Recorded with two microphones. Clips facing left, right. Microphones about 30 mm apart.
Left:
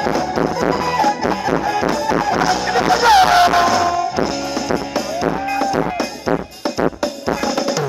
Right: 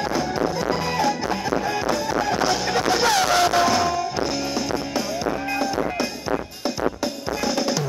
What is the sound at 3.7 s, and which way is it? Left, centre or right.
Music, centre.